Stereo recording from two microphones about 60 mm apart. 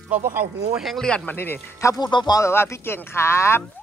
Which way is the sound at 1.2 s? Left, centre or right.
Left.